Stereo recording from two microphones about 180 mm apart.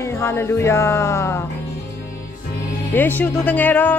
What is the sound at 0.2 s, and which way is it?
Speech, 15° left (ahead or behind).